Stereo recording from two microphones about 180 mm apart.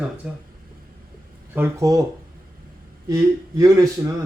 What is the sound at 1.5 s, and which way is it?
Speech, 15° right (ahead or behind).